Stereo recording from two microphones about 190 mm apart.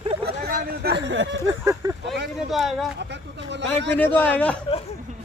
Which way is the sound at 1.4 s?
15° right (ahead or behind).